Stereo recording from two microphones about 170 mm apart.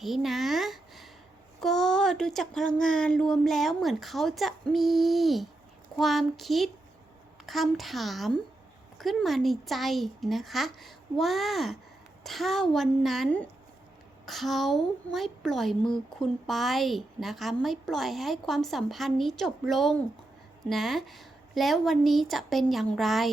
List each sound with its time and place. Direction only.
0.0 s a woman's voice: centre (ahead or behind)